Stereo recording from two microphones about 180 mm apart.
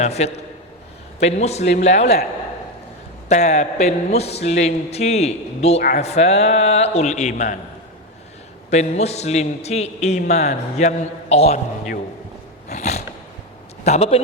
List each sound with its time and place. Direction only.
0.0 s a man's voice: 35° left (ahead or behind)
3.2 s a man's voice: 40° left (ahead or behind)
8.7 s a man's voice: 40° left (ahead or behind)
12.6 s a sound: 40° left (ahead or behind)
13.8 s a man's voice: 35° left (ahead or behind)